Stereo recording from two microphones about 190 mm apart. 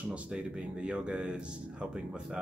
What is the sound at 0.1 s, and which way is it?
Speech, 5° right (ahead or behind).